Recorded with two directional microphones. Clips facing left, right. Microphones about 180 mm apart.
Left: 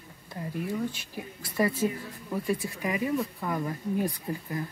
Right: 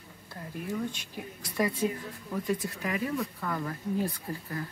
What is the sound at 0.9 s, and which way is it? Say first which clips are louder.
Speech: left 1 dB; 5° left (ahead or behind).